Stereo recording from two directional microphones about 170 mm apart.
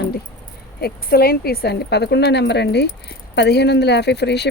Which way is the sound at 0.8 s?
65° left (ahead or behind).